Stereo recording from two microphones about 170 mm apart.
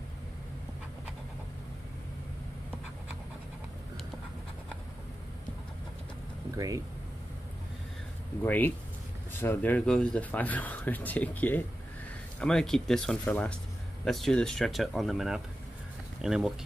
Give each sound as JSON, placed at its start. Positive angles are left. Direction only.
{"t": 6.5, "sound": "speech", "side_deg": -20}
{"t": 8.4, "sound": "speech", "side_deg": 10}